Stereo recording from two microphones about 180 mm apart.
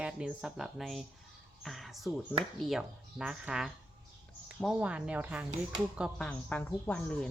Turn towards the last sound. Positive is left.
turn(degrees=5)  # may be behind; listen again after turning